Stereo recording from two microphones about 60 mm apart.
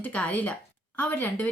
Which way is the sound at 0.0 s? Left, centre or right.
Left.